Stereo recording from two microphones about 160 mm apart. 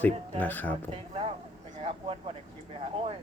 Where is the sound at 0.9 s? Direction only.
35° right (ahead or behind).